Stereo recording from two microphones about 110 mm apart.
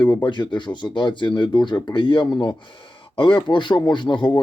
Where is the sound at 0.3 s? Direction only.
45° left (ahead or behind).